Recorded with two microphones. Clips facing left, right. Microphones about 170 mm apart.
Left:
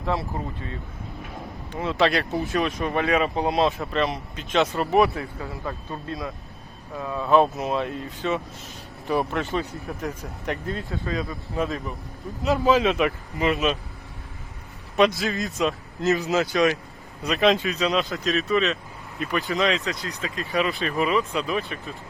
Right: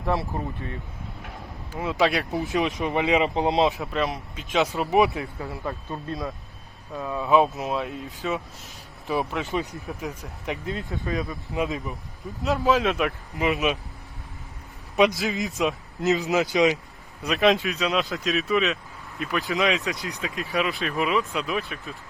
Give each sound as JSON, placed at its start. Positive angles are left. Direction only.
{"t": 0.2, "sound": "speech", "side_deg": 20}
{"t": 1.7, "sound": "a man's voice", "side_deg": -10}
{"t": 2.4, "sound": "speech", "side_deg": -20}
{"t": 3.8, "sound": "speech", "side_deg": 0}
{"t": 4.9, "sound": "a man's voice", "side_deg": -15}
{"t": 7.0, "sound": "speech", "side_deg": -10}
{"t": 10.7, "sound": "speech", "side_deg": -20}
{"t": 12.4, "sound": "speech", "side_deg": 0}
{"t": 15.0, "sound": "speech", "side_deg": 0}
{"t": 16.0, "sound": "a man's voice", "side_deg": -20}
{"t": 17.2, "sound": "speech", "side_deg": 0}
{"t": 19.9, "sound": "a man's voice", "side_deg": -20}
{"t": 20.2, "sound": "speech", "side_deg": -5}